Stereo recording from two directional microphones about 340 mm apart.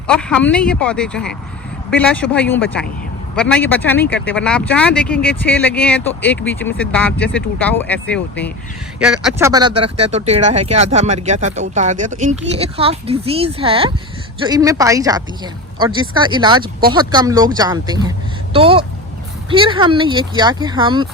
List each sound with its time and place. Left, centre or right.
0.1 s speech: centre